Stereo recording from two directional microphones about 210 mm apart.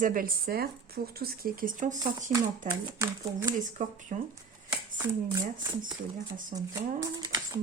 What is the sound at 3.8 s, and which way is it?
Speech, 35° right (ahead or behind).